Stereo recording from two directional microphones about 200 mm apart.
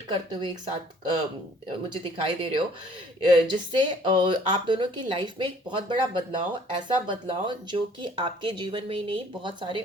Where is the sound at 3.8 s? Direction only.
25° right (ahead or behind).